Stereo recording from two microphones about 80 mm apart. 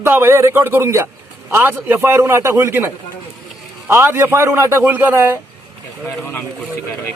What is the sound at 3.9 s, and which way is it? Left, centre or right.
Speech, right.